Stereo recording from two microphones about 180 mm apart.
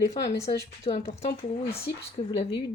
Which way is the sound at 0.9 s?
35° left (ahead or behind).